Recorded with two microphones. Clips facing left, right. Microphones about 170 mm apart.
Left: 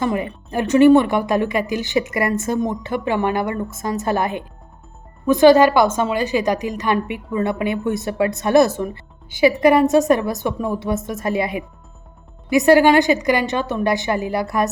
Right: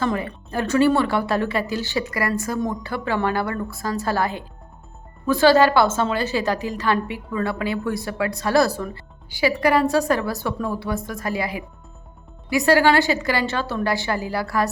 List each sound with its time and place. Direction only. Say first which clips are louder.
0.0 s a woman's voice: left 2 dB; 15° left (ahead or behind)